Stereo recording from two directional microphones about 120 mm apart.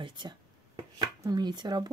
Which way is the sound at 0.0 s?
35° right (ahead or behind).